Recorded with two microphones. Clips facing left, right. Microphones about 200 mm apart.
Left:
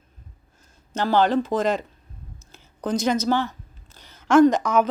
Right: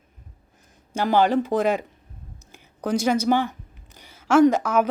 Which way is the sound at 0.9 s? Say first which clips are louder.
Even; 10° right (ahead or behind).